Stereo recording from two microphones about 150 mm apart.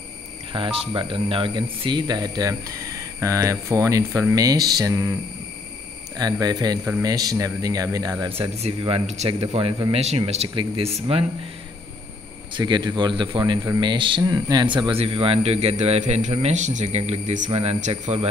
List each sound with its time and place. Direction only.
0.5 s speech: 35° right (ahead or behind)
6.4 s speech: 25° right (ahead or behind)
8.4 s speech: 40° right (ahead or behind)
12.5 s speech: 30° right (ahead or behind); by 18.2 s 50° right (ahead or behind)